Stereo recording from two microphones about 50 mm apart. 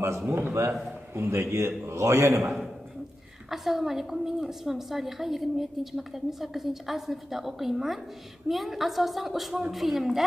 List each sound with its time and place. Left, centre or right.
0.3 s a man's voice: right
3.4 s a woman's voice: centre